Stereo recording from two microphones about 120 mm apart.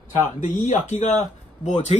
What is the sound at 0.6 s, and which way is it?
Speech, 75° left (ahead or behind).